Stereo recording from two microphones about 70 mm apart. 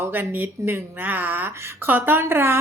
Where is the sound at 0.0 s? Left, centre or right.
Right.